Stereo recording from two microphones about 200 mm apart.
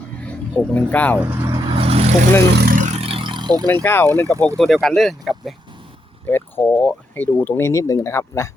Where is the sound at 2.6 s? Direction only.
45° right (ahead or behind); by 3.7 s 20° right (ahead or behind).